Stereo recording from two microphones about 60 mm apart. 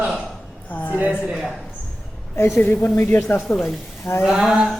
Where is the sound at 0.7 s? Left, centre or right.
Left.